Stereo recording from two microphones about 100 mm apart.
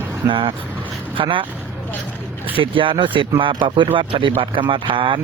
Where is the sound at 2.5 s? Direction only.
60° right (ahead or behind).